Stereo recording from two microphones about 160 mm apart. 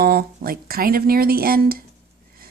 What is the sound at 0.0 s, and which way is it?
Speech, 70° right (ahead or behind).